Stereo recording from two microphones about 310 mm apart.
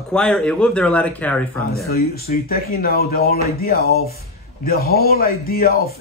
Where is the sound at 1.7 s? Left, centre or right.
Left.